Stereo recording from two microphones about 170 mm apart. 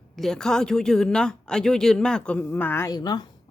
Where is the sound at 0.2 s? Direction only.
5° left (ahead or behind).